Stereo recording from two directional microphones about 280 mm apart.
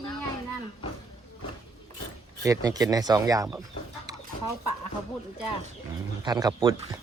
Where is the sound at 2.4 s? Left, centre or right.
Centre.